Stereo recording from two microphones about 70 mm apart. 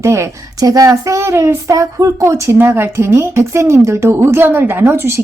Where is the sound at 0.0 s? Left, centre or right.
Right.